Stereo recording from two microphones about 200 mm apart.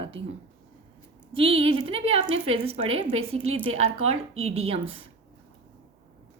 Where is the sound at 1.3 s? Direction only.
25° right (ahead or behind).